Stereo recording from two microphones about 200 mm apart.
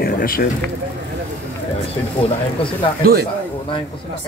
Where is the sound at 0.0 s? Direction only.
50° left (ahead or behind).